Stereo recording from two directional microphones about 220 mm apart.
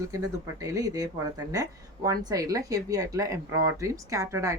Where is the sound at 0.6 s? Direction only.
15° right (ahead or behind).